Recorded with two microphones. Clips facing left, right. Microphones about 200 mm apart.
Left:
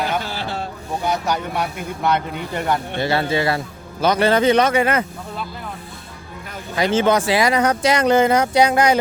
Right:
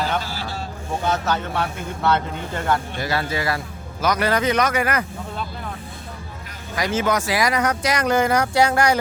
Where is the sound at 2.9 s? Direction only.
25° left (ahead or behind).